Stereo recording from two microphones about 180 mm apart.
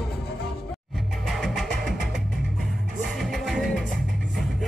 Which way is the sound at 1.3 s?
Centre (ahead or behind).